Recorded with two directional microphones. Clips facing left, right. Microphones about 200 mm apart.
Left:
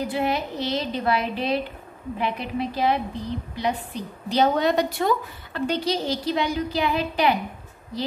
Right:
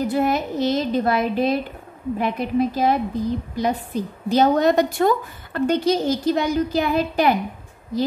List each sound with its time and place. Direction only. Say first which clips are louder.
0.0 s a woman's voice: right 4 dB; 45° right (ahead or behind)